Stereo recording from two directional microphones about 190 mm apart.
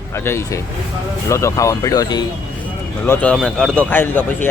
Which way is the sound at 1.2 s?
15° left (ahead or behind).